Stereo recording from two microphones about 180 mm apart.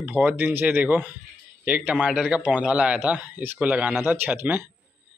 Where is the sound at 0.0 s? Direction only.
10° right (ahead or behind).